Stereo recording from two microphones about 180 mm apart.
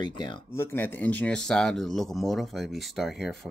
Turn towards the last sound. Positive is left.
turn(degrees=0)  # may be behind; listen again after turning